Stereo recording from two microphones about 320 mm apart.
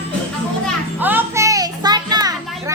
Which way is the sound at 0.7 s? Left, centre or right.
Centre.